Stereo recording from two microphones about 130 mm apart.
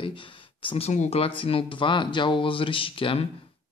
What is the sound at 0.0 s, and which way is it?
Speech, 40° left (ahead or behind).